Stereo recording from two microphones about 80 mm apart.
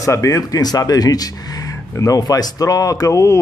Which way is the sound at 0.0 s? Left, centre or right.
Left.